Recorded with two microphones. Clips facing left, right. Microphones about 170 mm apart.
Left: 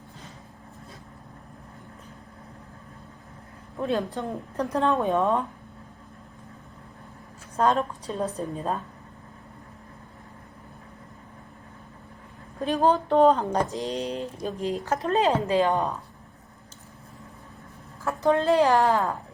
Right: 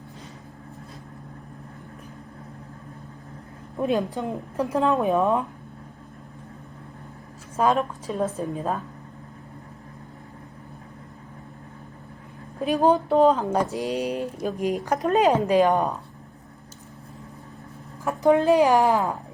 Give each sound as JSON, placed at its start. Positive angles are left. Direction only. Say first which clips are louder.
{"t": 3.8, "sound": "speech", "louder": "right 3 dB", "side_deg": -15}
{"t": 7.5, "sound": "a woman's voice", "louder": "right 1 dB", "side_deg": -5}
{"t": 12.6, "sound": "speech", "louder": "right 2 dB", "side_deg": -10}
{"t": 13.1, "sound": "a woman's voice", "louder": "right 1 dB", "side_deg": 0}
{"t": 13.7, "sound": "speech", "louder": "right 3 dB", "side_deg": -10}
{"t": 18.0, "sound": "speech", "louder": "right 4 dB", "side_deg": -15}